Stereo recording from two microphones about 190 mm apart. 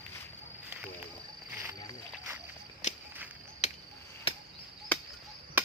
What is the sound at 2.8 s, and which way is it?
Cricket, 40° left (ahead or behind).